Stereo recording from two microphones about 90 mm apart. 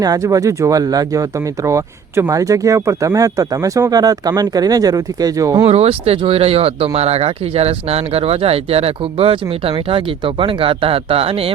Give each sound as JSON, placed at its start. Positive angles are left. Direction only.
{"t": 0.0, "sound": "speech", "side_deg": -45}
{"t": 5.6, "sound": "speech", "side_deg": -90}